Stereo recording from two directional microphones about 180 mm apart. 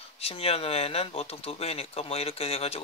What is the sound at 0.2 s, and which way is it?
Speech, 35° left (ahead or behind).